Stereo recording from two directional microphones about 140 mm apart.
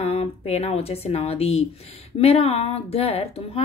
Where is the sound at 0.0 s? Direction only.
50° left (ahead or behind).